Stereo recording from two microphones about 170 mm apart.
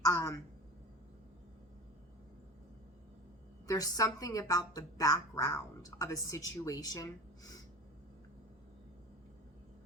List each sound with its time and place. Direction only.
0.0 s a woman's voice: 20° left (ahead or behind)
3.7 s a woman's voice: 20° left (ahead or behind)